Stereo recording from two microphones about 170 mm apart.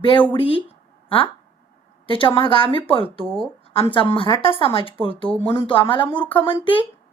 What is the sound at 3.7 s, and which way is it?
A woman's voice, 35° left (ahead or behind).